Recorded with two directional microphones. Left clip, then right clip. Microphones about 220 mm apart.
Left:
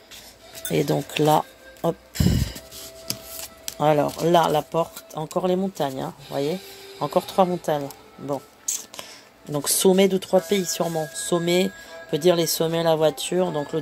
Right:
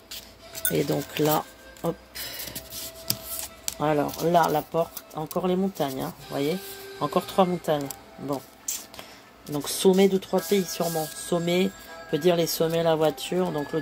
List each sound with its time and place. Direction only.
0.7 s speech: 25° left (ahead or behind)
3.8 s speech: 30° left (ahead or behind)
9.5 s speech: 30° left (ahead or behind)